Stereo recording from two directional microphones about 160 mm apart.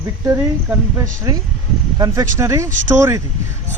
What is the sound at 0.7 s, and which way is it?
Speech, 10° right (ahead or behind).